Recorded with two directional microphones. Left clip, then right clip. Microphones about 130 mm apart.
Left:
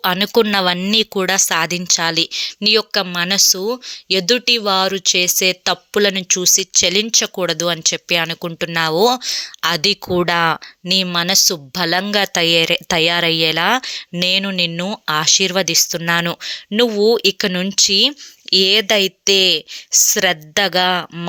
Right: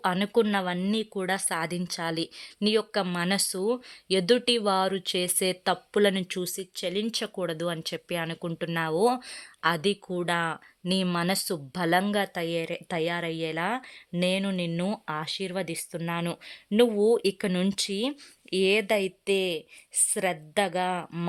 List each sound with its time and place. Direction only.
0.0 s speech: 25° left (ahead or behind)
1.3 s speech: 20° left (ahead or behind)
5.7 s speech: 20° left (ahead or behind)
6.8 s speech: 45° left (ahead or behind)
7.3 s speech: 25° left (ahead or behind)
10.1 s speech: 45° left (ahead or behind)
10.8 s speech: 10° left (ahead or behind)
12.1 s speech: 30° left (ahead or behind)
15.4 s speech: 35° left (ahead or behind)
15.6 s speech: 25° left (ahead or behind)
16.0 s speech: 40° left (ahead or behind)
16.4 s speech: 30° left (ahead or behind)